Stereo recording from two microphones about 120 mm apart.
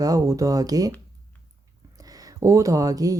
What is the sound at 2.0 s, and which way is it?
Speech, 30° right (ahead or behind).